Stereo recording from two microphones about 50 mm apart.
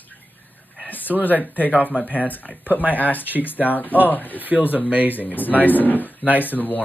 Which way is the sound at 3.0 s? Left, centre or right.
Left.